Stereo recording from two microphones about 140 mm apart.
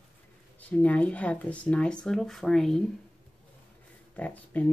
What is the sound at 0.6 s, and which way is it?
Speech, 10° left (ahead or behind).